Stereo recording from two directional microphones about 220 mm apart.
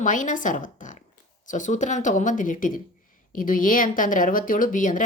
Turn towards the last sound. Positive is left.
turn(degrees=35)  # may be behind; listen again after turning